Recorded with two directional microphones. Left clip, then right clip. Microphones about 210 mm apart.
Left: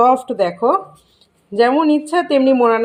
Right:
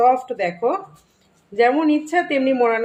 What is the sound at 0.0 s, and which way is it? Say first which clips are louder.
Speech: left 3 dB; 35° left (ahead or behind).